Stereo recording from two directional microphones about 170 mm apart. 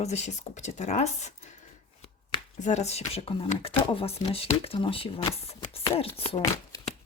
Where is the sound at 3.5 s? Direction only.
35° left (ahead or behind).